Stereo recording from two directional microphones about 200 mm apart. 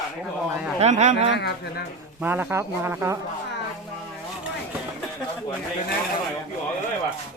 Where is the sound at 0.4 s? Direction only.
5° right (ahead or behind).